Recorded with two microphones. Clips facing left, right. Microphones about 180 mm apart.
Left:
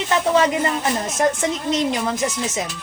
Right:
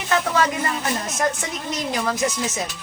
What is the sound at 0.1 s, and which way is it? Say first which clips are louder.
Speech: left 3 dB; 20° left (ahead or behind).